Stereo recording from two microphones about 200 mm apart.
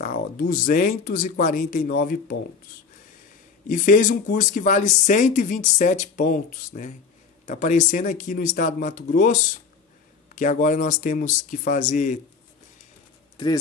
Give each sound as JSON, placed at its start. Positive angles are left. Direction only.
{"t": 0.0, "sound": "speech", "side_deg": 45}
{"t": 3.6, "sound": "speech", "side_deg": 40}